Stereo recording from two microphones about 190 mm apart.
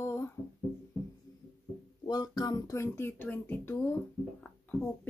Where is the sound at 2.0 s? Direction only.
20° left (ahead or behind).